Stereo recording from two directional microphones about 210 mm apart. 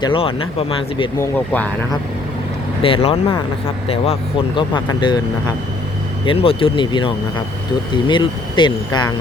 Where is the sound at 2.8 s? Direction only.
25° left (ahead or behind).